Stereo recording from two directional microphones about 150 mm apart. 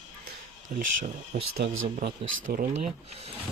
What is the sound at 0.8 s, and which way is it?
Speech, 50° right (ahead or behind).